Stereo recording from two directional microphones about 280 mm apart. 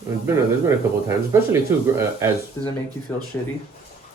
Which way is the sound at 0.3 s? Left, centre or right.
Centre.